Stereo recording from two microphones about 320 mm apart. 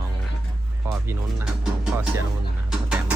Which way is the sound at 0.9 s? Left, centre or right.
Centre.